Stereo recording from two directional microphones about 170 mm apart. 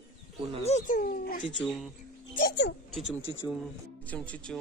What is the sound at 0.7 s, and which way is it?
Speech, 45° left (ahead or behind).